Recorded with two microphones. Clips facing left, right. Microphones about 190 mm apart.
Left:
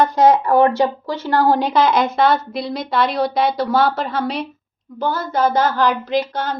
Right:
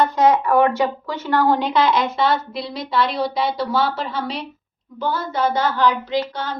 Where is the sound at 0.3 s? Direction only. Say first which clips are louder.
Left 2 dB; 35° left (ahead or behind).